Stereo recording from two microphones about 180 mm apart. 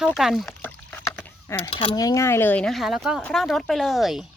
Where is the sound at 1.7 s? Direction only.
30° left (ahead or behind).